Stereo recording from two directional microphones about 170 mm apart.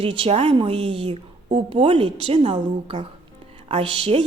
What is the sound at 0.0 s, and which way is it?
A woman's voice, 35° right (ahead or behind).